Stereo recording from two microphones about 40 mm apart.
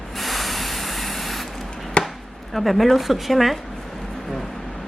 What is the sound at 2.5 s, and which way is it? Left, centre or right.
Speech, centre.